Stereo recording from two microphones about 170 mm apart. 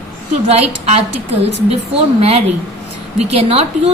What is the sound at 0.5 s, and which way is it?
Speech, 40° right (ahead or behind).